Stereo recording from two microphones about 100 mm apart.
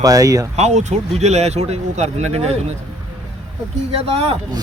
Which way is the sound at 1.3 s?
90° right.